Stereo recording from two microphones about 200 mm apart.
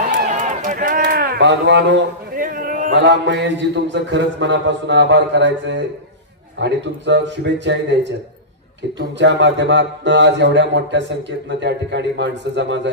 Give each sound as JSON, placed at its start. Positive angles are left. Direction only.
{"t": 0.1, "sound": "run", "side_deg": -40}
{"t": 2.3, "sound": "a sound", "side_deg": -45}
{"t": 2.9, "sound": "speech", "side_deg": -60}